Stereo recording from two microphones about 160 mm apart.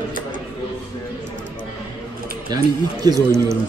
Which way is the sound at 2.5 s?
25° right (ahead or behind).